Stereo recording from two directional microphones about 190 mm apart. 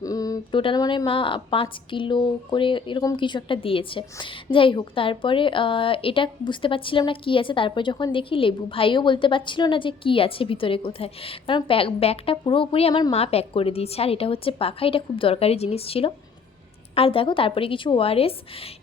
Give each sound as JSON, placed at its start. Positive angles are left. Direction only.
{"t": 0.0, "sound": "a woman's voice", "side_deg": 20}